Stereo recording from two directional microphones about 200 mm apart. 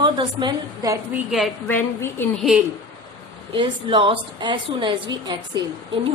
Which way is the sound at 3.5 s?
25° right (ahead or behind).